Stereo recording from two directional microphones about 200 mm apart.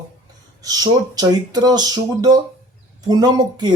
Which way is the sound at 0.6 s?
20° right (ahead or behind).